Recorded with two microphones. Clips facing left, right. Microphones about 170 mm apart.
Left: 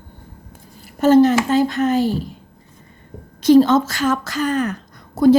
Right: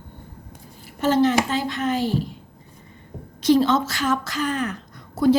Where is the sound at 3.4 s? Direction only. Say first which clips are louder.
Left 6 dB; 45° left (ahead or behind).